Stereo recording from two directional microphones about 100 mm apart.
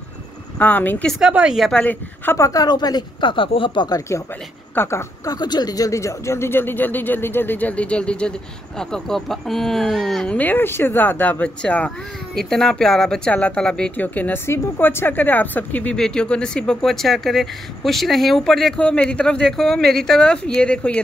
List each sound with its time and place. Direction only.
0.6 s speech: 15° left (ahead or behind)
1.2 s speech: 10° right (ahead or behind)
1.6 s speech: 10° left (ahead or behind)
2.3 s speech: 35° left (ahead or behind)
4.7 s speech: 25° left (ahead or behind)
5.3 s speech: 45° left (ahead or behind); by 10.3 s 5° left (ahead or behind)
10.3 s speech: 20° left (ahead or behind)